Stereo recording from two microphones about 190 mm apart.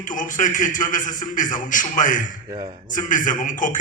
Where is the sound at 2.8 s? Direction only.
45° left (ahead or behind).